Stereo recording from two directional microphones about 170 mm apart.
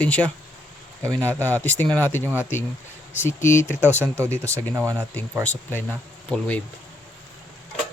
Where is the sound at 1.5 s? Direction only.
10° left (ahead or behind).